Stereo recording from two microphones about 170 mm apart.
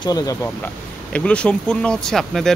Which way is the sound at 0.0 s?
20° left (ahead or behind).